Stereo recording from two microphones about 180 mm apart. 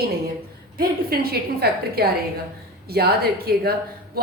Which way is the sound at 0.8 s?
55° right (ahead or behind).